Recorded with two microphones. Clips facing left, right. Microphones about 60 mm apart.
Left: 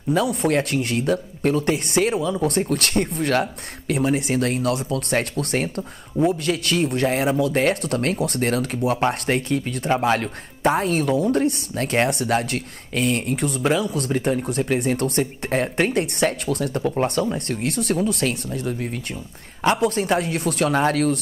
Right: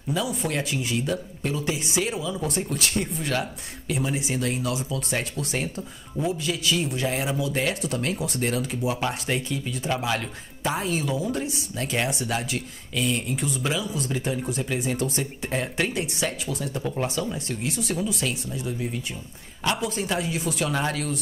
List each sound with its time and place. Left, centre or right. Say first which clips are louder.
0.1 s speech: left 7 dB; left
9.8 s speech: left 7 dB; left